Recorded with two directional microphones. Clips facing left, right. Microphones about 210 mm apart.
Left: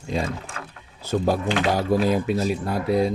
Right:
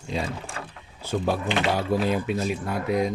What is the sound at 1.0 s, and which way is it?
Speech, 40° left (ahead or behind).